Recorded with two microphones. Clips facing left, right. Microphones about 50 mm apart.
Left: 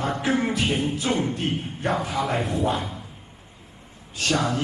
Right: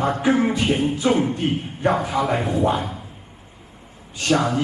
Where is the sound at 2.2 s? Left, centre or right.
Centre.